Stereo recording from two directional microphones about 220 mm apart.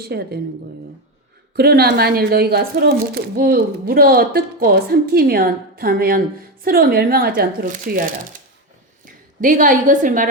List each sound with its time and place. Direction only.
0.0 s speech: 45° right (ahead or behind)
1.5 s a woman's voice: 45° right (ahead or behind)